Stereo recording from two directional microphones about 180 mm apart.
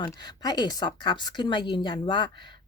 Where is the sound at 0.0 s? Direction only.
20° left (ahead or behind).